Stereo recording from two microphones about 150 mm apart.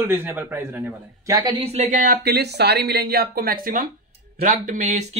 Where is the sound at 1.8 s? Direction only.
65° right (ahead or behind).